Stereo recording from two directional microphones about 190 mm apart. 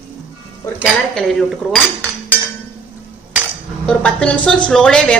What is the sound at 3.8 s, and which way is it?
Speech, 5° left (ahead or behind).